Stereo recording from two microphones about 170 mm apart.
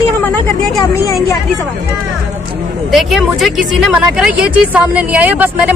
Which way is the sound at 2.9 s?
Centre (ahead or behind).